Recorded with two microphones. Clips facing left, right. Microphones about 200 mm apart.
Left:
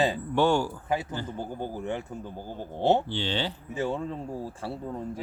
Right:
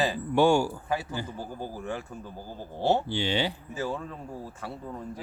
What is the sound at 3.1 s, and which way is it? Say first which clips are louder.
Speech: right 2 dB; 10° right (ahead or behind).